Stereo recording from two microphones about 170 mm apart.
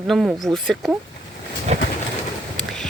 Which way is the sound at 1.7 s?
40° right (ahead or behind).